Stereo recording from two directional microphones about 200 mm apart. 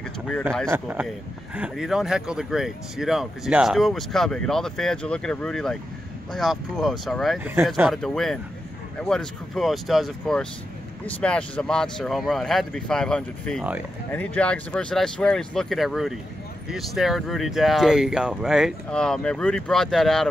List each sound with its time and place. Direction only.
0.7 s speech: 10° right (ahead or behind)